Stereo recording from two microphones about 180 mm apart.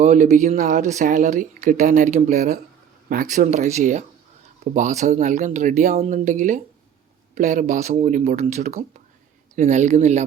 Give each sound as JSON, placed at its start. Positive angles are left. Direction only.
{"t": 0.0, "sound": "speech", "side_deg": -40}